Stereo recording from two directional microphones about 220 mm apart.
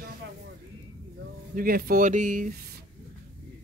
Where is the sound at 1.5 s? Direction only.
40° right (ahead or behind).